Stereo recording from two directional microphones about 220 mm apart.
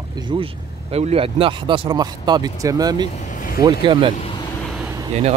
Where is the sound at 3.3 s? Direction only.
40° left (ahead or behind).